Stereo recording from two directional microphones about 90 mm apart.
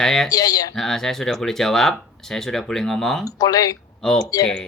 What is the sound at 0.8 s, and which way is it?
Speech, 5° left (ahead or behind).